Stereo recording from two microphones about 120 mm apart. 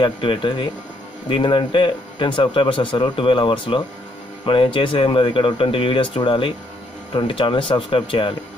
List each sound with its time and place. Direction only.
0.0 s speech: 45° left (ahead or behind)